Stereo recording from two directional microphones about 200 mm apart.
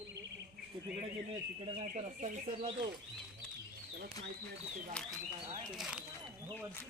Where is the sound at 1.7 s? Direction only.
40° right (ahead or behind).